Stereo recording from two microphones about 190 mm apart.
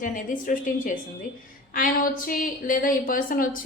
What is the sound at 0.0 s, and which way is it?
A woman's voice, 45° left (ahead or behind).